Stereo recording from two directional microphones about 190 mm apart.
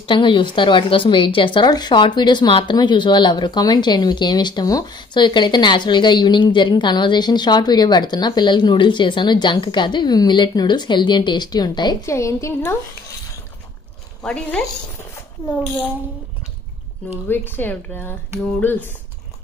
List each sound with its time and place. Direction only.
0.0 s a woman's voice: 25° left (ahead or behind)
14.2 s a woman's voice: 5° left (ahead or behind)
17.3 s speech: 10° left (ahead or behind)